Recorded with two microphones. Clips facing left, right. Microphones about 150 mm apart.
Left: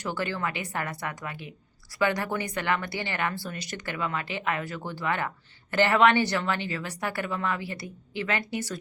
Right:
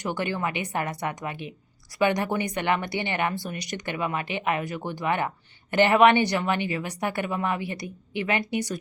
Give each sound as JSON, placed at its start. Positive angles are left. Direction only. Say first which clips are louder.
{"t": 0.0, "sound": "a woman's voice", "louder": "right 2 dB", "side_deg": -15}